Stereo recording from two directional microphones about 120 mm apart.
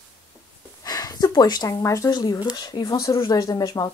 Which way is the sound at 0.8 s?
30° left (ahead or behind).